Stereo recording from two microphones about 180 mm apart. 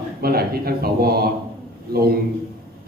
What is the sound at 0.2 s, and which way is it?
A man's voice, 60° right (ahead or behind).